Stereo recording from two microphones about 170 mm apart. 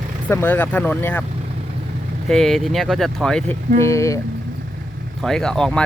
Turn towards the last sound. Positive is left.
turn(degrees=5)  # may be behind; listen again after turning